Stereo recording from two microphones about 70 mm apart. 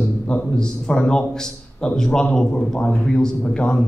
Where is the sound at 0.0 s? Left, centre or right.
Centre.